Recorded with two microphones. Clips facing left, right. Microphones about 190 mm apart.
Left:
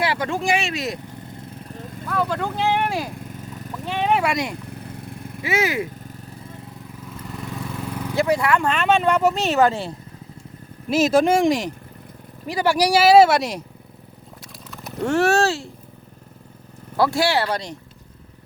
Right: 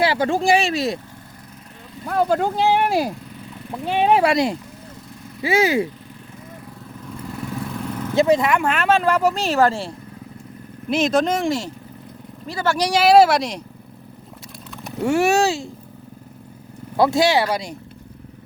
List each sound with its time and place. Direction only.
0.0 s speech: 30° right (ahead or behind)
2.0 s speech: 40° right (ahead or behind)
3.2 s vehicle: 45° left (ahead or behind)
3.7 s speech: 40° right (ahead or behind)
4.7 s vehicle: 60° left (ahead or behind)
5.4 s speech: 30° right (ahead or behind)
8.1 s speech: 20° right (ahead or behind); by 13.6 s centre (ahead or behind)
14.7 s speech: centre (ahead or behind)
17.0 s speech: 20° right (ahead or behind)